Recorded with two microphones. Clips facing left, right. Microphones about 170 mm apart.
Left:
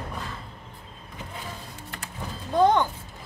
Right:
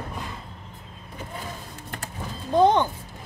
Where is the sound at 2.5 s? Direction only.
20° right (ahead or behind).